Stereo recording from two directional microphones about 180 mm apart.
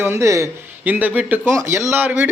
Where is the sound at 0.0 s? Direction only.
15° right (ahead or behind).